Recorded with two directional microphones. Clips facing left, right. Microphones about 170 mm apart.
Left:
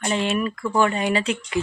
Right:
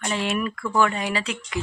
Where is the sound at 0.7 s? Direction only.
30° left (ahead or behind).